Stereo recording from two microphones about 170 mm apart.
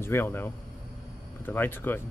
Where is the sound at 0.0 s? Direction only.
15° left (ahead or behind).